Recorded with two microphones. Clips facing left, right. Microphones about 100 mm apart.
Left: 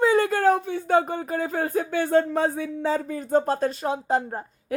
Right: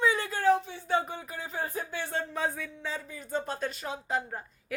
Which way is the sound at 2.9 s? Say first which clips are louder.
Left 12 dB; 50° left (ahead or behind).